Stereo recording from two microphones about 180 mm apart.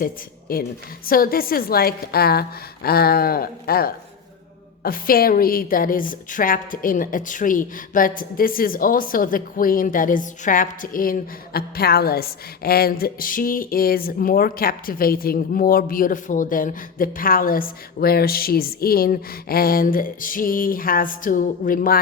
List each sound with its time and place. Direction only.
0.0 s a woman's voice: 55° left (ahead or behind)